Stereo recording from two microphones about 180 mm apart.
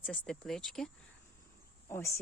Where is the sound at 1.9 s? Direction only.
15° left (ahead or behind).